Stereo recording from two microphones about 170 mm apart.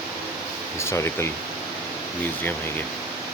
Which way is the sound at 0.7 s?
15° left (ahead or behind).